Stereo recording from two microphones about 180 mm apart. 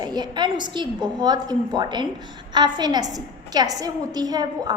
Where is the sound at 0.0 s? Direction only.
25° right (ahead or behind).